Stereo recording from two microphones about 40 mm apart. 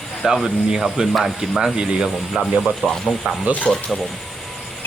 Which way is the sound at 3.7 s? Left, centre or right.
Left.